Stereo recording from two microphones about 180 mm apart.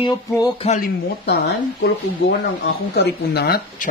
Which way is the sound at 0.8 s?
65° left (ahead or behind).